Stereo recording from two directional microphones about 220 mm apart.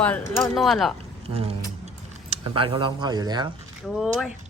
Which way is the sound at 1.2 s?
25° right (ahead or behind).